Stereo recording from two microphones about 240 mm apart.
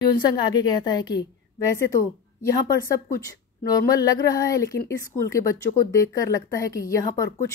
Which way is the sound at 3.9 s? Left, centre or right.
Centre.